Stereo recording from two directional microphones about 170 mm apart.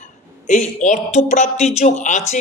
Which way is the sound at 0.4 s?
45° left (ahead or behind).